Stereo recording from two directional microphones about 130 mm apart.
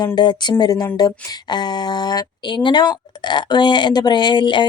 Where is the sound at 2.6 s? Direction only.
35° left (ahead or behind).